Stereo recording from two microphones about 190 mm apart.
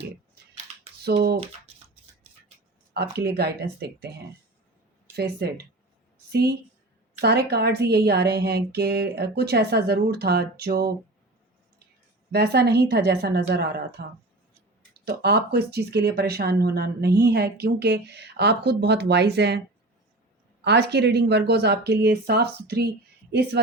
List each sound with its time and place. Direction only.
1.0 s speech: 55° right (ahead or behind)
2.9 s speech: 55° right (ahead or behind)
5.1 s speech: 60° right (ahead or behind)
12.3 s speech: 60° right (ahead or behind)
20.7 s speech: 60° right (ahead or behind)